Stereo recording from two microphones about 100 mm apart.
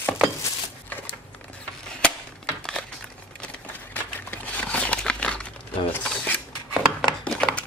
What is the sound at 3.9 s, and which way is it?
Crumpling, 15° left (ahead or behind).